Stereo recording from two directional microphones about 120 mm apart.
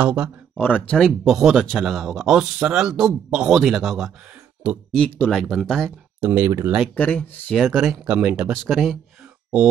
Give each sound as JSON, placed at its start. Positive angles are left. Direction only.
{"t": 0.0, "sound": "speech", "side_deg": -10}
{"t": 0.6, "sound": "speech", "side_deg": 15}
{"t": 4.9, "sound": "speech", "side_deg": 10}
{"t": 5.3, "sound": "speech", "side_deg": 0}
{"t": 6.2, "sound": "speech", "side_deg": -15}
{"t": 7.0, "sound": "speech", "side_deg": 10}
{"t": 7.5, "sound": "speech", "side_deg": 0}